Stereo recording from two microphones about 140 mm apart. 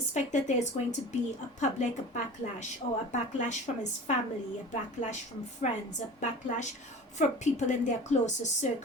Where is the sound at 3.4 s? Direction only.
55° left (ahead or behind).